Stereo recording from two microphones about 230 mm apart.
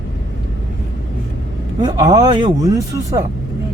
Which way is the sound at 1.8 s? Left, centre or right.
Centre.